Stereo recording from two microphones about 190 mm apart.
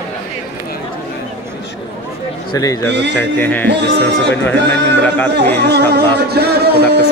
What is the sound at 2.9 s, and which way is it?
Speech, 65° right (ahead or behind).